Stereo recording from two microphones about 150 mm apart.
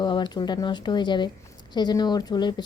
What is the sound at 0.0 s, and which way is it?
Speech, 30° left (ahead or behind).